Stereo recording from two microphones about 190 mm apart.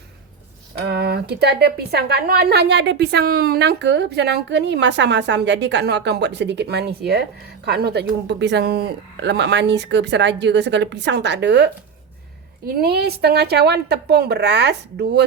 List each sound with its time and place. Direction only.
0.9 s a woman's voice: 60° right (ahead or behind)
12.6 s a woman's voice: 55° right (ahead or behind)